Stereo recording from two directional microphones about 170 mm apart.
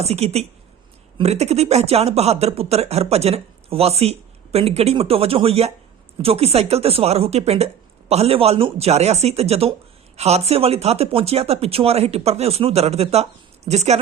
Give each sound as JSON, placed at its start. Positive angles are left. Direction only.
{"t": 0.0, "sound": "speech", "side_deg": -40}